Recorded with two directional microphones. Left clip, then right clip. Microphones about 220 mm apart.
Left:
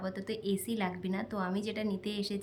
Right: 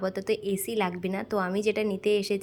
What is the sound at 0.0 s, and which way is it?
Speech, 15° right (ahead or behind).